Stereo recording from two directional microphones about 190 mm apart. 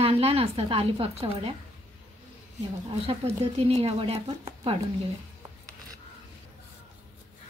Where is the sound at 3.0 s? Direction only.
30° right (ahead or behind).